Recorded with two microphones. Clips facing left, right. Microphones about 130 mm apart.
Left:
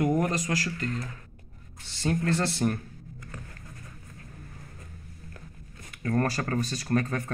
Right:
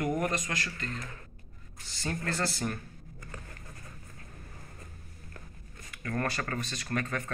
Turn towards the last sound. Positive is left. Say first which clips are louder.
# left 6 dB
turn(degrees=25)  # may be behind; listen again after turning